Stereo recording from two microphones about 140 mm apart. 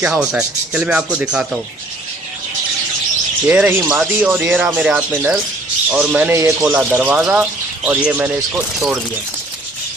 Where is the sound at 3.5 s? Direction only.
15° right (ahead or behind).